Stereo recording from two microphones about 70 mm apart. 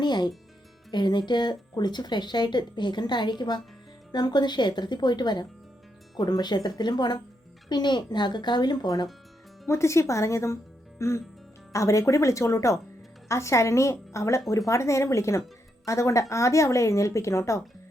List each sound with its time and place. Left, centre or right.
0.0 s speech: left
9.6 s a woman's voice: left